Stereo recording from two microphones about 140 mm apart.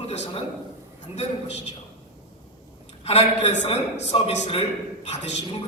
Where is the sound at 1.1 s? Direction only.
50° left (ahead or behind).